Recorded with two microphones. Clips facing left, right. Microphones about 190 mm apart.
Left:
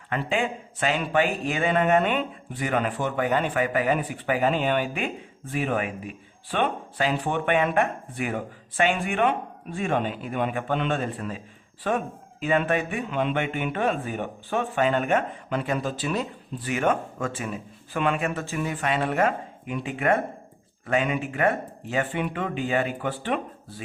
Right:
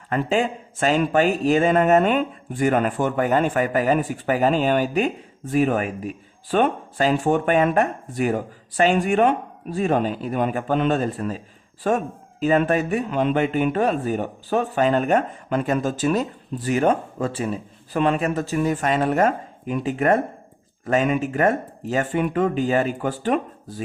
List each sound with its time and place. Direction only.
0.1 s speech: 40° right (ahead or behind)